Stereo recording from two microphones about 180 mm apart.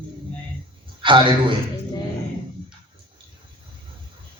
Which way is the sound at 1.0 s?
30° right (ahead or behind).